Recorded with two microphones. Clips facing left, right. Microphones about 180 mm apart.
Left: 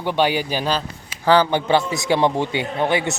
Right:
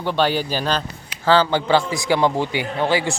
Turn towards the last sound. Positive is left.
turn(degrees=20)  # may be behind; listen again after turning